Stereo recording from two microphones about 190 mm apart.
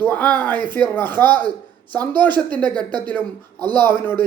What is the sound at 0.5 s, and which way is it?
Speech, 25° right (ahead or behind).